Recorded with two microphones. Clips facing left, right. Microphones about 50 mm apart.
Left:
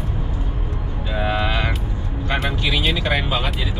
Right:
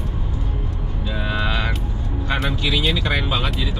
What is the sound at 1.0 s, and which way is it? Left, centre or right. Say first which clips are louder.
Music: left 2 dB; left.